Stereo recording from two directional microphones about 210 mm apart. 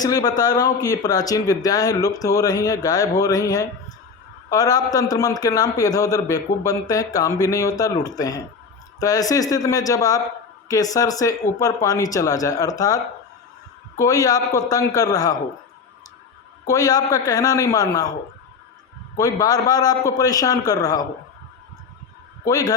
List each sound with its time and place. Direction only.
0.0 s speech: 15° left (ahead or behind)
14.0 s speech: 15° left (ahead or behind)
16.6 s speech: 15° left (ahead or behind)
19.1 s speech: 15° left (ahead or behind)
22.4 s speech: 15° left (ahead or behind)